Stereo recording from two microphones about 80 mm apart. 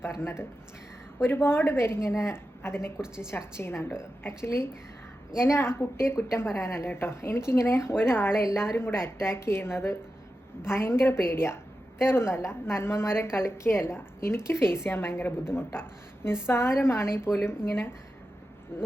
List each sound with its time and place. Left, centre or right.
0.0 s a woman's voice: left